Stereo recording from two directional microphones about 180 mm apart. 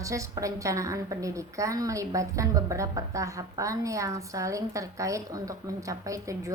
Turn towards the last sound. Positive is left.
turn(degrees=-20)  # may be behind; listen again after turning